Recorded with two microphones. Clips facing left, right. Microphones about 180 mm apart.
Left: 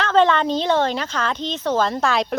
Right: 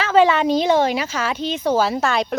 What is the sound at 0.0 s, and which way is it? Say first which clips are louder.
A woman's voice: right 2 dB; 10° right (ahead or behind).